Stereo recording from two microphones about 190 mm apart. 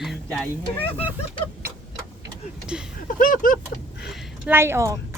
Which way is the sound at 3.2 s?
45° left (ahead or behind).